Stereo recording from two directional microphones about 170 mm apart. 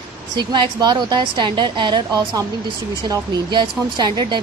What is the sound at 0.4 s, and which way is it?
Speech, 25° right (ahead or behind).